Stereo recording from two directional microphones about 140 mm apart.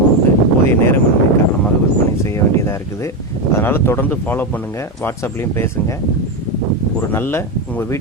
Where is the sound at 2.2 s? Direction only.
20° left (ahead or behind).